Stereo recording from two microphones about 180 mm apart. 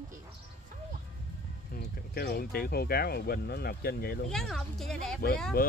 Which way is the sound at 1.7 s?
60° left (ahead or behind).